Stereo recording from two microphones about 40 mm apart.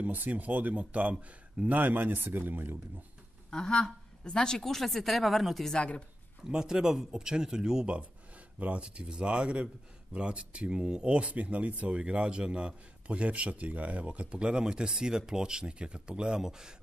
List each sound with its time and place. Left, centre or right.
0.0 s speech: right
1.7 s a man's voice: right
3.4 s speech: centre
4.6 s speech: centre
6.4 s speech: centre
8.5 s speech: right; by 16.7 s centre